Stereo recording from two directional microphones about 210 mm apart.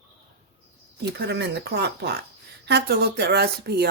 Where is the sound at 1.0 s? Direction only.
55° right (ahead or behind).